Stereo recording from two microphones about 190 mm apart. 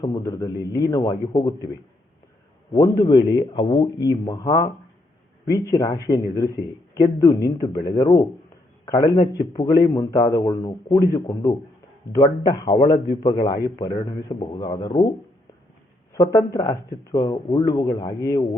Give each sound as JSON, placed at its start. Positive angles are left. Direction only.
{"t": 0.0, "sound": "speech", "side_deg": 20}
{"t": 2.7, "sound": "speech", "side_deg": 20}
{"t": 9.3, "sound": "speech", "side_deg": 20}
{"t": 16.1, "sound": "speech", "side_deg": 20}